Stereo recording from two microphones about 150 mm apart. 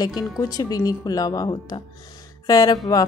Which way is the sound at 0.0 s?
25° left (ahead or behind).